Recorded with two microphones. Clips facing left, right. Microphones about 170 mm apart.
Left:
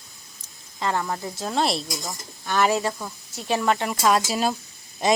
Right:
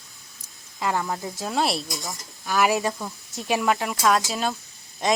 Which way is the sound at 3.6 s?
Centre (ahead or behind).